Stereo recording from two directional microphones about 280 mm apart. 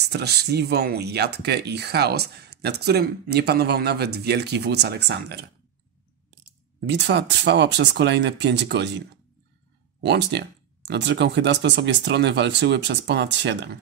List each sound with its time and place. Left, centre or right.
0.1 s speech: right